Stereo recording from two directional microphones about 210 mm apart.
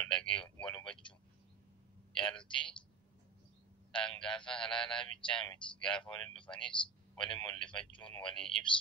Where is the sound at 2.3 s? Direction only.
25° left (ahead or behind).